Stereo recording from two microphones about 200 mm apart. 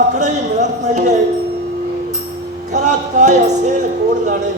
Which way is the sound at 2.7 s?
35° right (ahead or behind).